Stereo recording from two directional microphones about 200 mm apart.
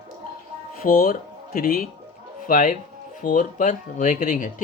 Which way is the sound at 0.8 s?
45° left (ahead or behind).